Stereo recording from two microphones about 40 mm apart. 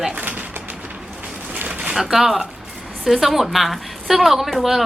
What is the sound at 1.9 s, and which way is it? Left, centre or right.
A woman's voice, centre.